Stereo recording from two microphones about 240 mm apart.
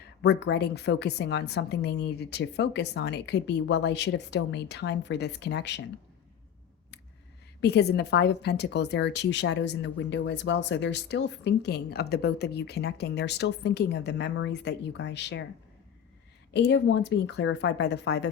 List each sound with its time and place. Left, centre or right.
0.2 s a woman's voice: left
7.6 s a woman's voice: left
16.5 s a woman's voice: left